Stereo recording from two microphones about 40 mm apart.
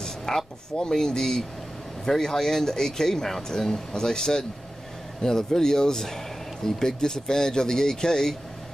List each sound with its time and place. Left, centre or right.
0.0 s speech: centre